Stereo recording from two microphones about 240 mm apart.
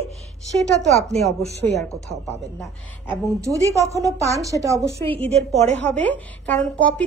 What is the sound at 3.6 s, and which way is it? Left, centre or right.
A woman's voice, centre.